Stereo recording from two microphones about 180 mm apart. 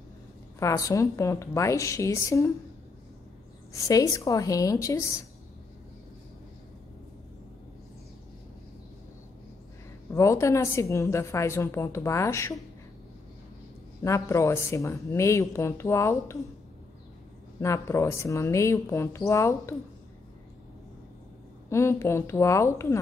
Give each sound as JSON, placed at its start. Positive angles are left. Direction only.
{"t": 0.6, "sound": "a woman's voice", "side_deg": 15}
{"t": 3.7, "sound": "a woman's voice", "side_deg": 20}
{"t": 10.1, "sound": "a woman's voice", "side_deg": 15}
{"t": 14.0, "sound": "a woman's voice", "side_deg": 15}
{"t": 17.6, "sound": "a woman's voice", "side_deg": 15}
{"t": 21.6, "sound": "a woman's voice", "side_deg": 15}